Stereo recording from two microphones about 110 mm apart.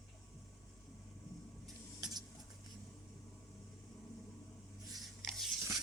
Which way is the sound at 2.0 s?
40° right (ahead or behind).